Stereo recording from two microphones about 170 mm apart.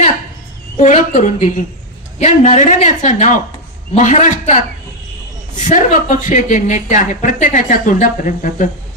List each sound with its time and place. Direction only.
0.8 s speech: 45° left (ahead or behind)